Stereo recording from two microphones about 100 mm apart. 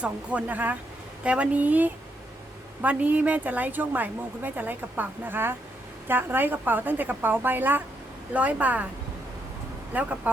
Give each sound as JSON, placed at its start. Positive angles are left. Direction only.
{"t": 0.0, "sound": "a woman's voice", "side_deg": -10}
{"t": 9.9, "sound": "a woman's voice", "side_deg": -15}